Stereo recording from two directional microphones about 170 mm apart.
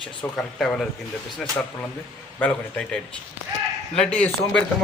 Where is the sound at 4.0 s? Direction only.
5° left (ahead or behind).